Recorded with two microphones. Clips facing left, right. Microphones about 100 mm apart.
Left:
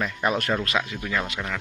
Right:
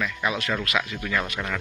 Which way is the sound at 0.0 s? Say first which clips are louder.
Left 2 dB; 45° left (ahead or behind).